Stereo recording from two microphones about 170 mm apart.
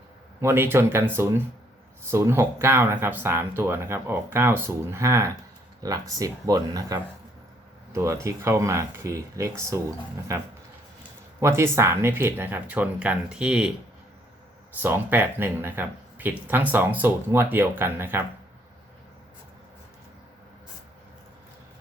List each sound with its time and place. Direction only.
0.4 s speech: 15° right (ahead or behind)
14.8 s speech: 10° right (ahead or behind)